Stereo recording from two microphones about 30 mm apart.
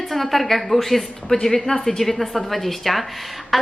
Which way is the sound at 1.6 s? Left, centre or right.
Centre.